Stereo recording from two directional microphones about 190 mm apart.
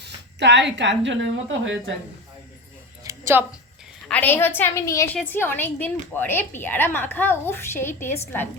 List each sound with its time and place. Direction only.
0.0 s a woman's voice: 65° right (ahead or behind)
3.0 s a sound: 15° right (ahead or behind)
4.1 s a woman's voice: 10° left (ahead or behind)